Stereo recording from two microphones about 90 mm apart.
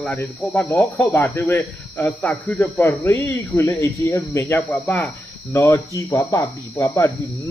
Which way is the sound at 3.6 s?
35° left (ahead or behind).